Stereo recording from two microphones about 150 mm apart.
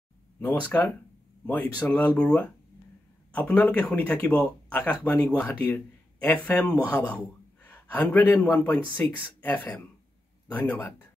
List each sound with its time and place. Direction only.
0.4 s speech: 15° left (ahead or behind)
7.6 s a sound: 10° left (ahead or behind)
8.3 s speech: 10° left (ahead or behind)